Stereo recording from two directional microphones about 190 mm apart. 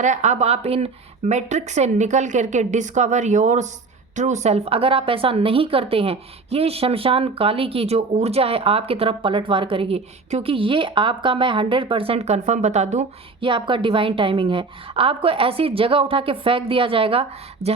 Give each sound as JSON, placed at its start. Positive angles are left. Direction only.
{"t": 0.0, "sound": "a woman's voice", "side_deg": -40}
{"t": 13.5, "sound": "speech", "side_deg": -25}